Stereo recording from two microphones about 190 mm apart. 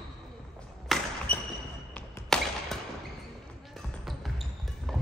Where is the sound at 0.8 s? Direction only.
Centre (ahead or behind).